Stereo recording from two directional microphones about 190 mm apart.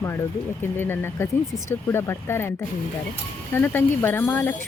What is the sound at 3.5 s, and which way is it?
Speech, 10° left (ahead or behind).